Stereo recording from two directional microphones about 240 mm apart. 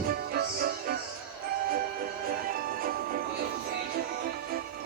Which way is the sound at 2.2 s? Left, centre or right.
Right.